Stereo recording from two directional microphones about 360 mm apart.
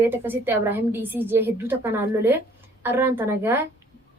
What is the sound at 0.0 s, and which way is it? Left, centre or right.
A woman's voice, centre.